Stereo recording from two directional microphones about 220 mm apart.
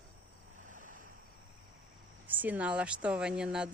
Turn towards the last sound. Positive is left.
turn(degrees=-5)  # may be behind; listen again after turning